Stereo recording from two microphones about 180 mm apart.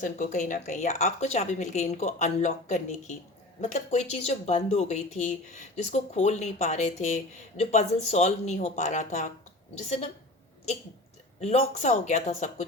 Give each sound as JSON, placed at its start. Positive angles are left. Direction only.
{"t": 0.0, "sound": "speech", "side_deg": 45}
{"t": 11.3, "sound": "speech", "side_deg": 35}